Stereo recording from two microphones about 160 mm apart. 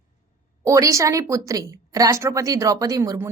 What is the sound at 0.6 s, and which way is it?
A woman's voice, 20° right (ahead or behind).